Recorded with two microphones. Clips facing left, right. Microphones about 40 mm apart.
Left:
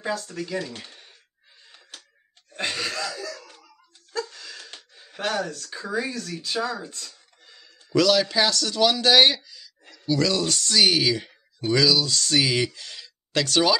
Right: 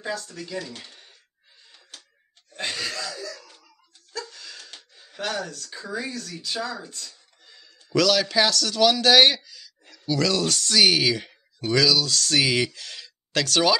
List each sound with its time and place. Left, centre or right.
0.7 s speech: centre
2.5 s throat clearing: centre
4.9 s speech: centre
7.4 s speech: centre